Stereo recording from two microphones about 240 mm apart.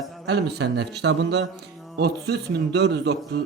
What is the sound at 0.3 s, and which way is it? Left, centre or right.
A man's voice, right.